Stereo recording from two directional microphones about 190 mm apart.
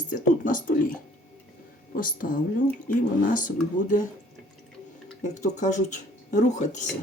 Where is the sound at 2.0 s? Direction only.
45° left (ahead or behind).